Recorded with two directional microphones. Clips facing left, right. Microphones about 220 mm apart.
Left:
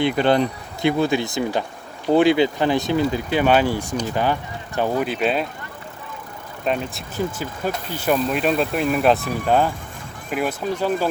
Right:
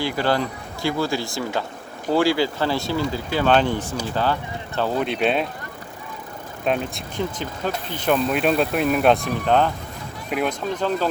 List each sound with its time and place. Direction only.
0.0 s speech: 20° left (ahead or behind)
5.0 s speech: centre (ahead or behind)
6.7 s speech: centre (ahead or behind)